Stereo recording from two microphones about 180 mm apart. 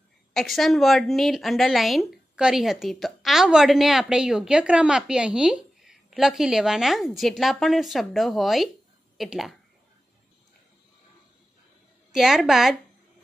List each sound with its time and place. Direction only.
0.3 s a woman's voice: centre (ahead or behind)
12.1 s a woman's voice: centre (ahead or behind)